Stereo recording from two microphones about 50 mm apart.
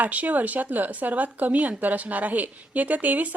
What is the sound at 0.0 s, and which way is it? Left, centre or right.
A woman's voice, right.